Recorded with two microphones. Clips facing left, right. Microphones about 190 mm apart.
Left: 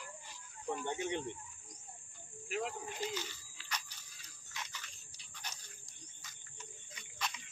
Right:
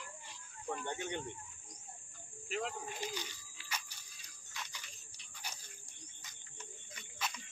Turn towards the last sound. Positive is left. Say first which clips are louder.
# right 1 dB
turn(degrees=-10)  # may be behind; listen again after turning